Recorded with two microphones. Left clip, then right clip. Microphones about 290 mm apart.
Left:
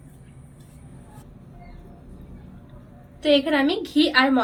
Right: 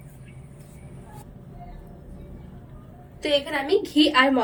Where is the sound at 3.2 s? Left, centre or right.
Left.